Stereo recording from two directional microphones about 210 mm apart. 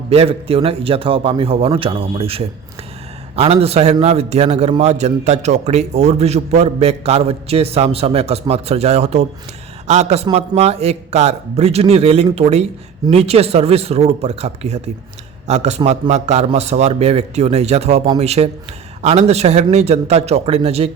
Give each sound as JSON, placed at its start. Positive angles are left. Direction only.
{"t": 0.1, "sound": "a man's voice", "side_deg": -30}